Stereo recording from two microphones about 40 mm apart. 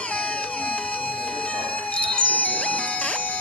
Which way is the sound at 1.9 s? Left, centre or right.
Left.